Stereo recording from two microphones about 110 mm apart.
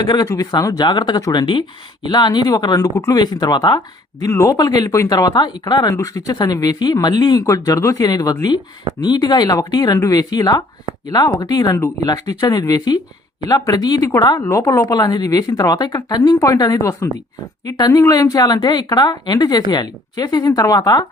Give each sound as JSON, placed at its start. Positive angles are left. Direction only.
{"t": 0.0, "sound": "speech", "side_deg": 40}
{"t": 4.2, "sound": "speech", "side_deg": 25}